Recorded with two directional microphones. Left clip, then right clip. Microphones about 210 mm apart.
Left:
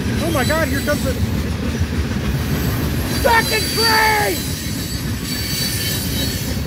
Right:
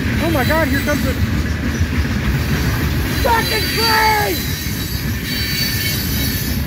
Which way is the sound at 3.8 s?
15° right (ahead or behind).